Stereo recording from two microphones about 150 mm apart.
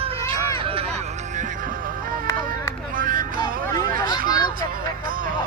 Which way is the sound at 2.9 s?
65° right (ahead or behind).